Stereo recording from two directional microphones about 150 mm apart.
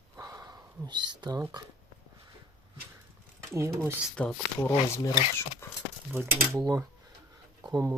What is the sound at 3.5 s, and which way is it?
Speech, 20° right (ahead or behind).